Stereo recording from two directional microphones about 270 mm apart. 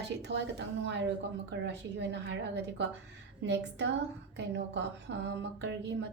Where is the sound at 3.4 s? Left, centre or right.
Right.